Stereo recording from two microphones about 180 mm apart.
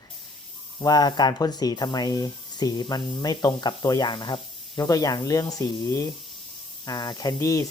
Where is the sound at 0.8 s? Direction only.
20° left (ahead or behind).